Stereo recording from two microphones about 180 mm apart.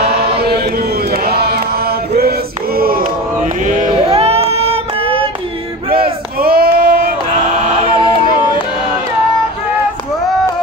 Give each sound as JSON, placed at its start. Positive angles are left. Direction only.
{"t": 1.1, "sound": "chant", "side_deg": -60}
{"t": 3.6, "sound": "child singing", "side_deg": -45}
{"t": 6.4, "sound": "a sound", "side_deg": -55}